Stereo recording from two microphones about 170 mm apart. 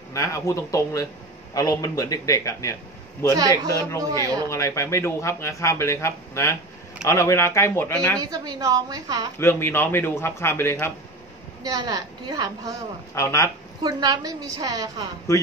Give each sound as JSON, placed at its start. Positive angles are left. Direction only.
{"t": 0.1, "sound": "a man's voice", "side_deg": 20}
{"t": 3.3, "sound": "a woman's voice", "side_deg": -20}
{"t": 4.5, "sound": "speech", "side_deg": 15}
{"t": 8.2, "sound": "a woman's voice", "side_deg": -20}
{"t": 9.4, "sound": "speech", "side_deg": 15}
{"t": 11.6, "sound": "a woman's voice", "side_deg": -25}
{"t": 13.1, "sound": "speech", "side_deg": 15}
{"t": 13.8, "sound": "a woman's voice", "side_deg": -25}